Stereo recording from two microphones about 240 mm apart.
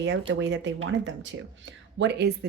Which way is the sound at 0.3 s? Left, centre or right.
Right.